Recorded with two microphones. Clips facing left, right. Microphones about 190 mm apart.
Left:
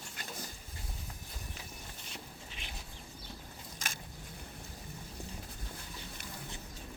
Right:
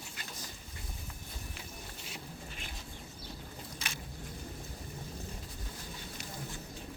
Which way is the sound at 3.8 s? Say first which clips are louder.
Left 1 dB; 45° left (ahead or behind).